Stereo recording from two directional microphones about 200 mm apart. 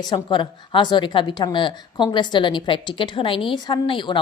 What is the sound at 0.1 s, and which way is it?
Speech, 25° left (ahead or behind).